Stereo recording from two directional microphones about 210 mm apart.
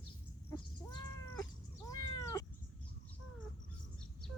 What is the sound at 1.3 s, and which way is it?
Cat, 15° left (ahead or behind).